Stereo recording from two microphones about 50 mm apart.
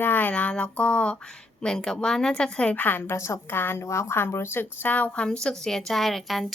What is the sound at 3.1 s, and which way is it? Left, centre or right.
Speech, left.